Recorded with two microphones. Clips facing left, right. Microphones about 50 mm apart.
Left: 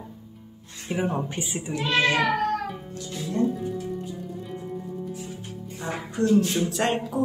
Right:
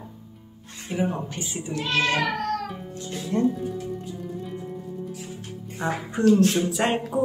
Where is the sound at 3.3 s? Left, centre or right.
Right.